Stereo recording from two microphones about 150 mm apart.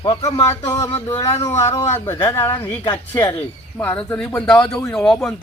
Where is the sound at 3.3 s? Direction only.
15° left (ahead or behind).